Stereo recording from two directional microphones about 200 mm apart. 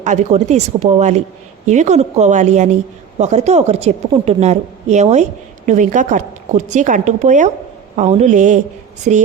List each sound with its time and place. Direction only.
0.0 s a woman's voice: 35° right (ahead or behind)